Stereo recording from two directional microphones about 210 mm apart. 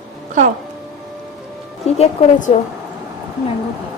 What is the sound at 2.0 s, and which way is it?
Speech, 30° left (ahead or behind).